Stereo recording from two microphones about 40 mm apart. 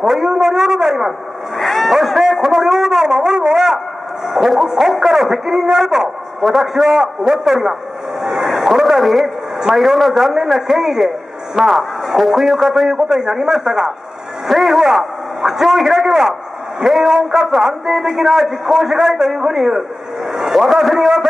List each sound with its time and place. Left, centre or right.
0.0 s a sound: centre
1.6 s a sound: centre
4.3 s music: centre
4.7 s a sound: centre
9.9 s a man's voice: centre
11.6 s music: centre
12.2 s a man's voice: centre
12.9 s a man's voice: centre
14.5 s a man's voice: centre